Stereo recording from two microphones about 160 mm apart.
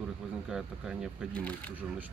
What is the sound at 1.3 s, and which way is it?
Speech, 10° left (ahead or behind).